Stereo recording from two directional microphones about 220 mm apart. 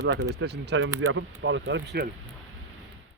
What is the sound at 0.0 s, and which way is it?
Speech, 50° right (ahead or behind).